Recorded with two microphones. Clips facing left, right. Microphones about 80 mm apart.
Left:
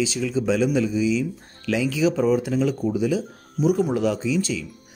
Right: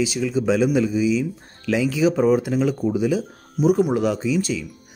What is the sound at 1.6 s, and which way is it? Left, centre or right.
Speech, right.